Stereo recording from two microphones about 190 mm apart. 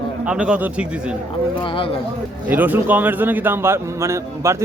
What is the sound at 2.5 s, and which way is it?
Speech, 10° right (ahead or behind).